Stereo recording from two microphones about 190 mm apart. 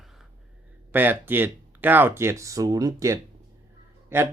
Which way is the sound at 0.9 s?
10° right (ahead or behind).